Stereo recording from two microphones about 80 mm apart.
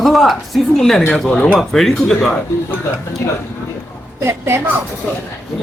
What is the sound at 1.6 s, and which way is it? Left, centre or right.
Speech, centre.